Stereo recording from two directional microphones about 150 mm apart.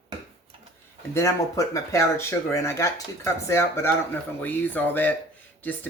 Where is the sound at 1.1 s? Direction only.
20° left (ahead or behind).